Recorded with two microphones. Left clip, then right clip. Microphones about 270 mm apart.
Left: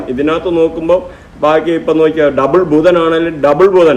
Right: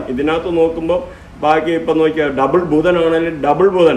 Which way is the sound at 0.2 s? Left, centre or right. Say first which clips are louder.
Left 3 dB; centre.